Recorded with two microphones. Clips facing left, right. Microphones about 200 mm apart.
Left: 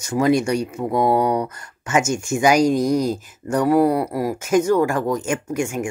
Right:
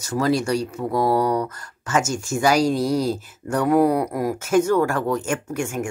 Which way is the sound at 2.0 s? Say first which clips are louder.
Left 4 dB; centre (ahead or behind).